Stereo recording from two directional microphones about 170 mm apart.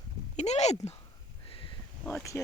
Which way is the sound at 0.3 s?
40° left (ahead or behind).